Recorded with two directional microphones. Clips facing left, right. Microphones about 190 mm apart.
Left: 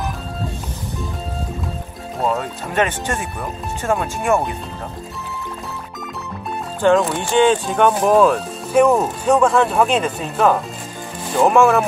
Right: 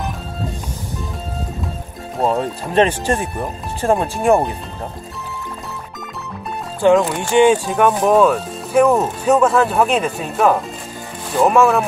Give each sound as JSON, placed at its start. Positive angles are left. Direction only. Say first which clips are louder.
{"t": 2.2, "sound": "speech", "louder": "right 3 dB", "side_deg": -30}
{"t": 6.8, "sound": "speech", "louder": "right 2 dB", "side_deg": -15}